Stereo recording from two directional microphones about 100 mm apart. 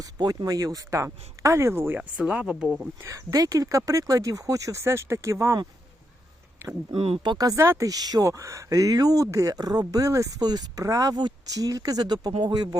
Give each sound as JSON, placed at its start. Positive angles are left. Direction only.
{"t": 0.0, "sound": "speech", "side_deg": -35}
{"t": 2.0, "sound": "speech", "side_deg": -10}
{"t": 3.0, "sound": "speech", "side_deg": -30}
{"t": 6.9, "sound": "speech", "side_deg": -75}
{"t": 7.3, "sound": "speech", "side_deg": -40}